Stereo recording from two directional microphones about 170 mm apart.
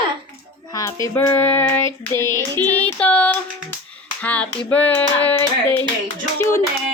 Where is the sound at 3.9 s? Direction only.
10° left (ahead or behind).